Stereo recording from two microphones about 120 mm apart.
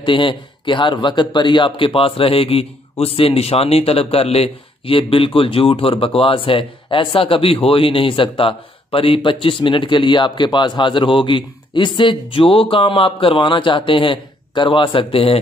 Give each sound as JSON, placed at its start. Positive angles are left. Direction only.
{"t": 0.0, "sound": "a man's voice", "side_deg": 45}